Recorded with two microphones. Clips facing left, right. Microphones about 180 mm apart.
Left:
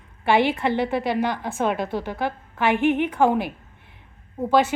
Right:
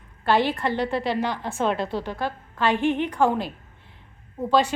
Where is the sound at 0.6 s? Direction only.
15° left (ahead or behind).